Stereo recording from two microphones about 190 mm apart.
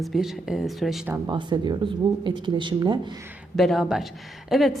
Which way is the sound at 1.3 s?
25° right (ahead or behind).